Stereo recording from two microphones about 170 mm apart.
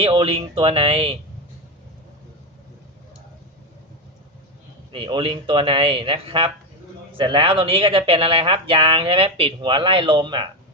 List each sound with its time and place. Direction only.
0.0 s speech: 30° right (ahead or behind)
4.9 s speech: 30° right (ahead or behind)